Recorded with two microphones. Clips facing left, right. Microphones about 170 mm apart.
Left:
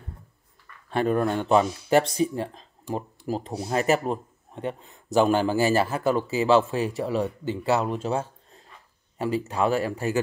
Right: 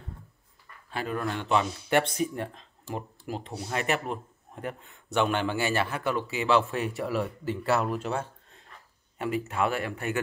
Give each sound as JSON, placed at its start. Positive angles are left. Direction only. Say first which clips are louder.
{"t": 0.8, "sound": "speech", "louder": "left 8 dB", "side_deg": 45}
{"t": 7.0, "sound": "speech", "louder": "left 3 dB", "side_deg": 25}